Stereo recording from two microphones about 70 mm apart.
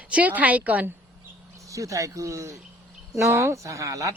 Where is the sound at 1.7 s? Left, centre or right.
Right.